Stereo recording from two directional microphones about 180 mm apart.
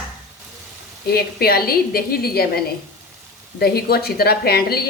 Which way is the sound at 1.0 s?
60° left (ahead or behind).